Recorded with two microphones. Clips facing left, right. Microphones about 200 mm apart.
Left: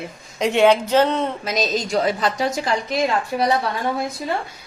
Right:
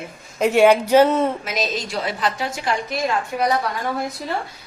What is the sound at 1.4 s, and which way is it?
A woman's voice, 35° left (ahead or behind).